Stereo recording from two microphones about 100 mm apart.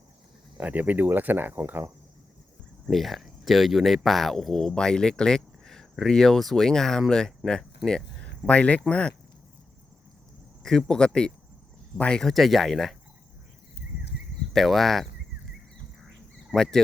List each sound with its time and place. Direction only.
0.5 s speech: 15° right (ahead or behind)
2.9 s speech: centre (ahead or behind)
10.6 s speech: 5° left (ahead or behind)
14.5 s speech: centre (ahead or behind)
16.5 s speech: 5° right (ahead or behind)